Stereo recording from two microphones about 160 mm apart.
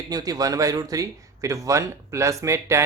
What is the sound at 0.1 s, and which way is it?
Speech, 25° right (ahead or behind).